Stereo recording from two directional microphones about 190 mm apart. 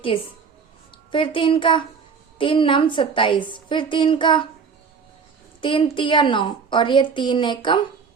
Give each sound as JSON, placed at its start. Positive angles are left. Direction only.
{"t": 1.1, "sound": "a woman's voice", "side_deg": 25}
{"t": 5.5, "sound": "a woman's voice", "side_deg": 25}